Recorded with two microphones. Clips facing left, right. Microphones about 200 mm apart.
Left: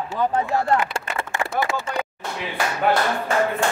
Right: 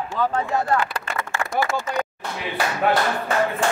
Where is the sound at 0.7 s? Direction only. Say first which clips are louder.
Left 1 dB; 25° left (ahead or behind).